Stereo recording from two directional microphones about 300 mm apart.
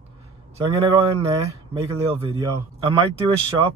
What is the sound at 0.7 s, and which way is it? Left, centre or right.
Speech, centre.